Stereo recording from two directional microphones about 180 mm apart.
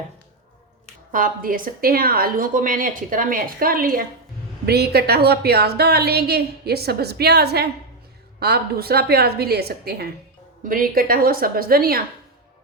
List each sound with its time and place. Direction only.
1.1 s a woman's voice: 50° right (ahead or behind)
10.6 s a woman's voice: 50° right (ahead or behind)